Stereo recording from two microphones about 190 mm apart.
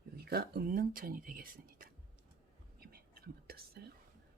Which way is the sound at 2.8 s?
50° right (ahead or behind).